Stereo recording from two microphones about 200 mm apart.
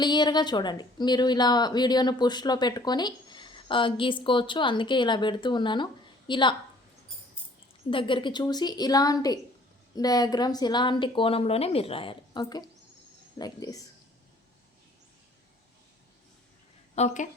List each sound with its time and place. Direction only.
0.0 s a woman's voice: 20° left (ahead or behind)
7.9 s a woman's voice: 25° left (ahead or behind)
16.9 s speech: 35° left (ahead or behind)